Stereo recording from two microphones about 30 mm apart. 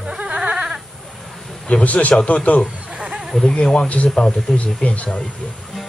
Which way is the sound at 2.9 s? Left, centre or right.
Right.